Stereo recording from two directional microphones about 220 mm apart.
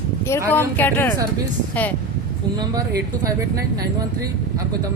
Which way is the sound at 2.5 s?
20° right (ahead or behind).